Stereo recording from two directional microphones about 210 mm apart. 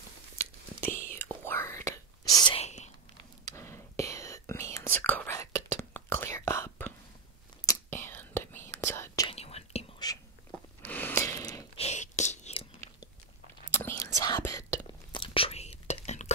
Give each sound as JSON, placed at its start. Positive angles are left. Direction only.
{"t": 0.4, "sound": "whispering", "side_deg": 10}
{"t": 3.4, "sound": "whispering", "side_deg": 15}
{"t": 9.3, "sound": "whispering", "side_deg": 30}
{"t": 10.9, "sound": "snort", "side_deg": 10}
{"t": 11.7, "sound": "whispering", "side_deg": 30}
{"t": 13.7, "sound": "whispering", "side_deg": 15}